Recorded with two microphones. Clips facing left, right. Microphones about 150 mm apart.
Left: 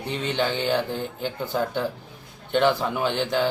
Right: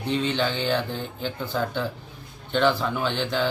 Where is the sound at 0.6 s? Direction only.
15° left (ahead or behind).